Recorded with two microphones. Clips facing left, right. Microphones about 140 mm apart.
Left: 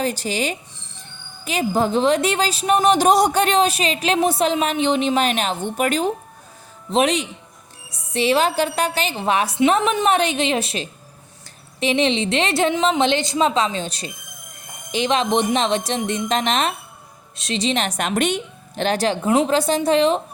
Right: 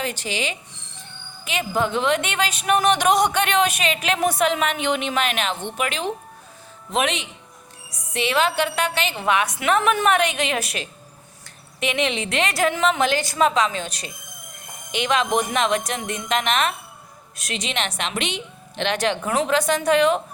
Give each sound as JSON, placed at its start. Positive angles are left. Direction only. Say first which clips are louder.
{"t": 0.0, "sound": "a woman's voice", "louder": "left 4 dB", "side_deg": 40}